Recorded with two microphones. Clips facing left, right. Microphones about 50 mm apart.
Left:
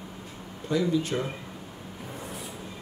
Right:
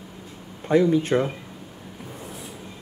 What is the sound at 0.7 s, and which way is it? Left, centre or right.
Speech, right.